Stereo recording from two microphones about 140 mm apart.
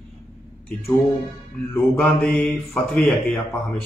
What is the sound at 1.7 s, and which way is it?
Speech, 5° left (ahead or behind).